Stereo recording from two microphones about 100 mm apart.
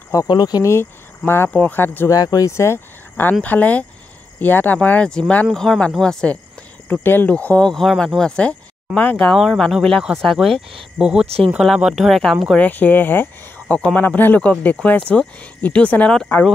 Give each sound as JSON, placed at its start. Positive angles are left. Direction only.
{"t": 0.3, "sound": "speech", "side_deg": 45}
{"t": 0.7, "sound": "speech", "side_deg": 25}
{"t": 2.0, "sound": "speech", "side_deg": 35}
{"t": 6.9, "sound": "speech", "side_deg": 20}
{"t": 11.2, "sound": "speech", "side_deg": -90}
{"t": 11.5, "sound": "speech", "side_deg": -5}
{"t": 12.5, "sound": "speech", "side_deg": 15}